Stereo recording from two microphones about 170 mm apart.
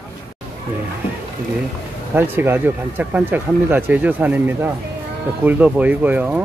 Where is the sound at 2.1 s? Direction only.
15° right (ahead or behind).